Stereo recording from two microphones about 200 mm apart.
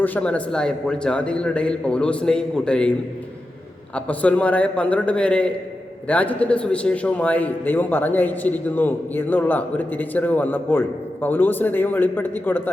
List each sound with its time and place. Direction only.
0.0 s a man's voice: 5° left (ahead or behind)
3.9 s a man's voice: 5° left (ahead or behind)